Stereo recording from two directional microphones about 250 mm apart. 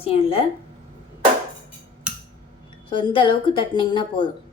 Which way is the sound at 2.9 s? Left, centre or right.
Centre.